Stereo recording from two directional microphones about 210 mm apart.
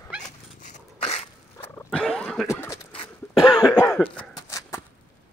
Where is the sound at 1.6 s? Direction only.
10° left (ahead or behind).